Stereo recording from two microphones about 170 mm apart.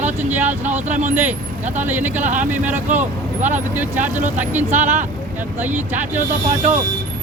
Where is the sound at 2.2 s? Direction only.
50° right (ahead or behind).